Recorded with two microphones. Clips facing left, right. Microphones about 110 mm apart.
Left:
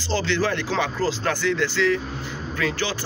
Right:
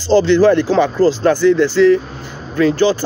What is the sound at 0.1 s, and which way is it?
Speech, 35° right (ahead or behind).